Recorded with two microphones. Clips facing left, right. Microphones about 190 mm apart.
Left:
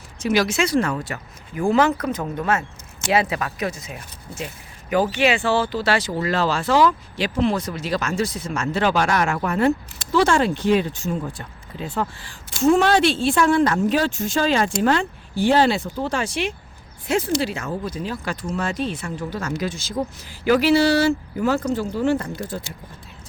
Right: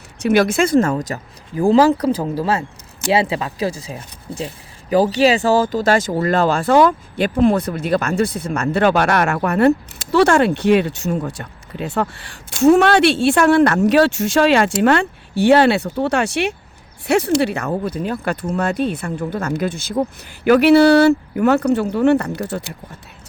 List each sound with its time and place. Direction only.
0.2 s speech: 55° right (ahead or behind)